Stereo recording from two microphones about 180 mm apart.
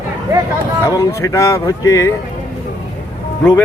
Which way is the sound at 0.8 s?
15° left (ahead or behind).